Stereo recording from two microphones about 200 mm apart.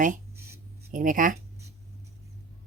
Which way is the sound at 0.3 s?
15° right (ahead or behind).